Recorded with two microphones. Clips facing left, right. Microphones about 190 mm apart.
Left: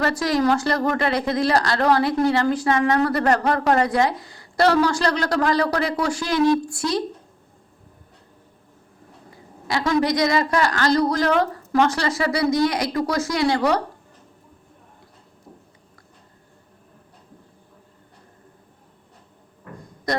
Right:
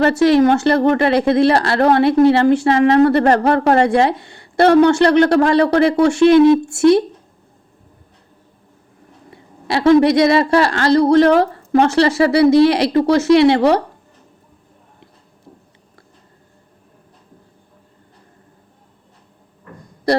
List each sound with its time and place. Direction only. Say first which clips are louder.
0.0 s a woman's voice: right 9 dB; 25° right (ahead or behind)
9.6 s a woman's voice: right 9 dB; 25° right (ahead or behind)